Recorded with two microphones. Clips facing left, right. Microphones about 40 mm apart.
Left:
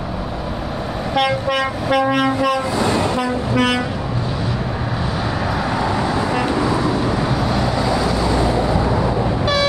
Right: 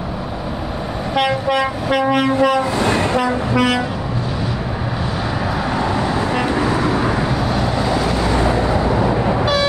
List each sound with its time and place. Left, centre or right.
1.1 s train: centre
2.9 s train: right
3.5 s train: centre
5.8 s vehicle: centre
6.5 s vehicle: right
7.2 s vehicle: centre
7.9 s vehicle: right
8.6 s vehicle: centre